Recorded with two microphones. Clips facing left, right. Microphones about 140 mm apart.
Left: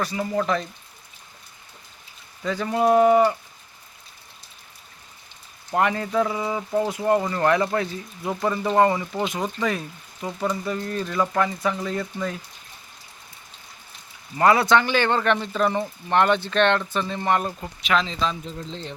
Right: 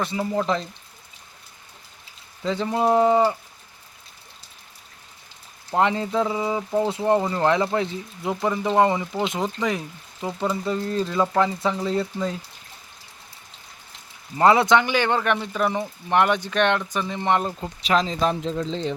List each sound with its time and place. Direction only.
0.0 s speech: 25° right (ahead or behind)
2.4 s speech: 25° right (ahead or behind)
5.7 s speech: 20° right (ahead or behind)
6.8 s speech: 25° right (ahead or behind)
14.3 s speech: 20° right (ahead or behind)
17.8 s speech: 40° right (ahead or behind)
18.3 s speech: 90° right